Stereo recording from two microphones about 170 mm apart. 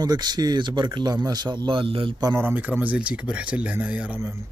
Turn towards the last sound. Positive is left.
turn(degrees=-10)  # may be behind; listen again after turning